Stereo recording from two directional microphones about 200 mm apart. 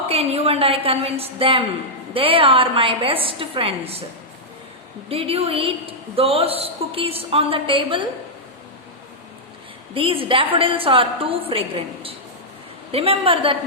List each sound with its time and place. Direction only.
0.1 s a woman's voice: 30° right (ahead or behind)
5.0 s a woman's voice: 30° right (ahead or behind)
9.9 s a woman's voice: 25° right (ahead or behind)